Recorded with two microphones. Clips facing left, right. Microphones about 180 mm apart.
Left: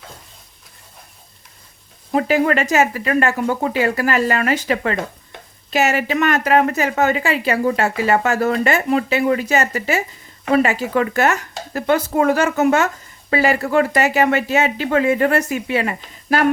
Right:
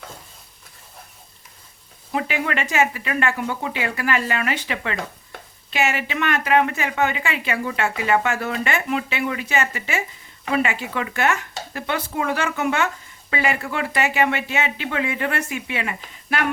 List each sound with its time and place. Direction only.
2.1 s a woman's voice: 40° left (ahead or behind)